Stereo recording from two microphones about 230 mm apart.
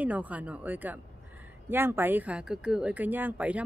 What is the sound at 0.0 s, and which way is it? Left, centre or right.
Speech, centre.